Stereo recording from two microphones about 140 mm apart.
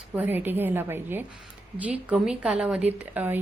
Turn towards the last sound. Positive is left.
turn(degrees=-10)  # may be behind; listen again after turning